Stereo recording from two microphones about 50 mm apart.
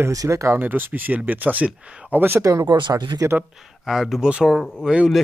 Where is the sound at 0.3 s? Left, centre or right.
Right.